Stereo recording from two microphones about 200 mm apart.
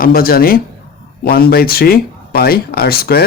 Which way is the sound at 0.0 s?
45° left (ahead or behind).